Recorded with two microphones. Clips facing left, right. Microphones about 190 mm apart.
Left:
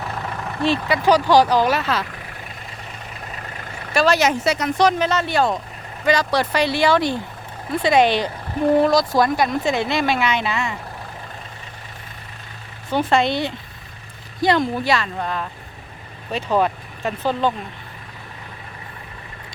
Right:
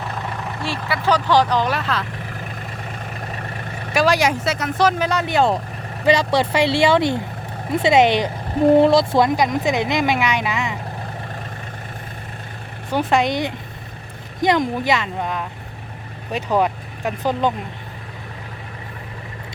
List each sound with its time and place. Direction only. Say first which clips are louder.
0.6 s speech: left 6 dB; 20° left (ahead or behind); by 2.0 s 5° left (ahead or behind)
3.9 s speech: even; 15° right (ahead or behind)
13.1 s speech: even; 15° right (ahead or behind)